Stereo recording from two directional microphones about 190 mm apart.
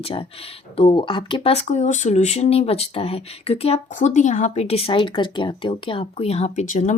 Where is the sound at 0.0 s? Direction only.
30° left (ahead or behind).